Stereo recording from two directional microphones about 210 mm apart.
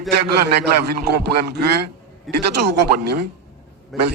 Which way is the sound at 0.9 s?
50° right (ahead or behind).